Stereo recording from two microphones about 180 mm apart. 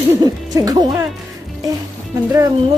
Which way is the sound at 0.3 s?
20° right (ahead or behind).